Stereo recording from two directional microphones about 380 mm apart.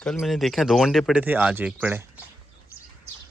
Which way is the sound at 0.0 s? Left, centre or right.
Centre.